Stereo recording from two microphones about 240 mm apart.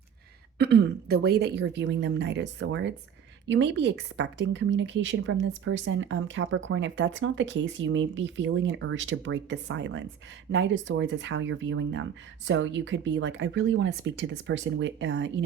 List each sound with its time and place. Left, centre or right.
0.6 s a woman's voice: right